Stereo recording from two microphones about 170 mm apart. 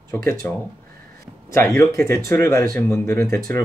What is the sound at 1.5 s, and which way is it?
Speech, 15° left (ahead or behind).